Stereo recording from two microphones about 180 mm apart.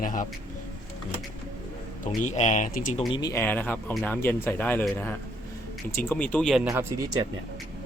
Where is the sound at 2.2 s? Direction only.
40° left (ahead or behind).